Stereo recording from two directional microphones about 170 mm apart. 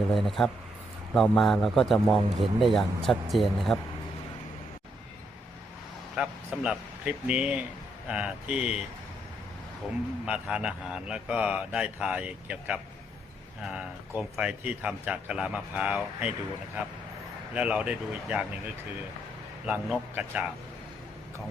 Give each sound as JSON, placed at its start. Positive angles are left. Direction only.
{"t": 0.1, "sound": "a man's voice", "side_deg": 0}
{"t": 6.1, "sound": "a man's voice", "side_deg": -5}
{"t": 10.2, "sound": "a man's voice", "side_deg": -5}
{"t": 17.5, "sound": "a man's voice", "side_deg": -10}
{"t": 19.6, "sound": "a man's voice", "side_deg": -10}